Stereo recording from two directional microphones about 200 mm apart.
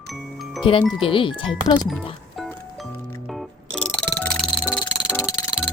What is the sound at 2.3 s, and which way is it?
Music, centre (ahead or behind).